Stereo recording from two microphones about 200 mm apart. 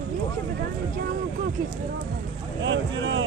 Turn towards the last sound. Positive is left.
turn(degrees=-65)  # may be behind; listen again after turning